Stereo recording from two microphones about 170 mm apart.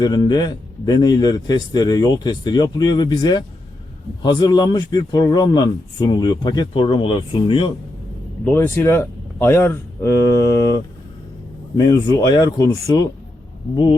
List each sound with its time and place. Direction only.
0.0 s a man's voice: 25° left (ahead or behind)
8.4 s speech: 15° left (ahead or behind)
11.8 s a man's voice: 20° left (ahead or behind)